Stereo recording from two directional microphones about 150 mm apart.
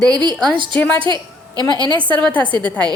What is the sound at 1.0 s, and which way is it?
A woman's voice, 30° right (ahead or behind).